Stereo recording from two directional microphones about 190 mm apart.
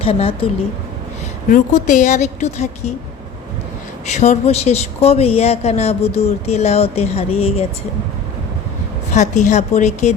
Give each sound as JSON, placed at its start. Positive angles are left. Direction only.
{"t": 0.0, "sound": "speech", "side_deg": 30}
{"t": 1.5, "sound": "speech", "side_deg": 45}
{"t": 4.1, "sound": "speech", "side_deg": 35}
{"t": 9.1, "sound": "speech", "side_deg": 40}